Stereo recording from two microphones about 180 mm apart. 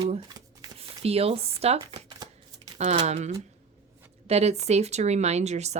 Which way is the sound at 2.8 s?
40° right (ahead or behind).